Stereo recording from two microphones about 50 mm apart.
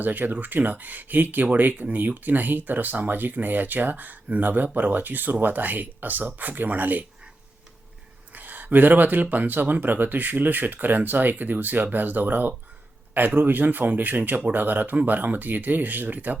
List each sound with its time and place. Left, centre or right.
0.0 s speech: right
8.3 s speech: right